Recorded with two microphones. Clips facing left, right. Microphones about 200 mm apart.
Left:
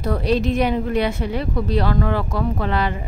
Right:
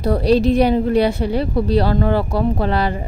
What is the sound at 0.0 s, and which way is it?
Speech, 35° right (ahead or behind).